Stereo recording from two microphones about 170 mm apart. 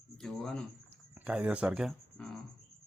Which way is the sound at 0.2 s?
5° left (ahead or behind).